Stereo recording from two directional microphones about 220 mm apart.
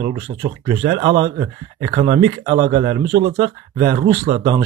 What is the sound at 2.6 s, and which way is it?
Speech, 40° right (ahead or behind).